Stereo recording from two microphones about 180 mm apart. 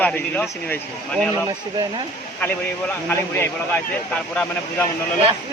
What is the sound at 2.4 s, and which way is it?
A man's voice, 10° left (ahead or behind).